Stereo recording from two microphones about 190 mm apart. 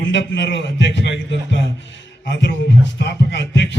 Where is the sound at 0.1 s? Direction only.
70° left (ahead or behind).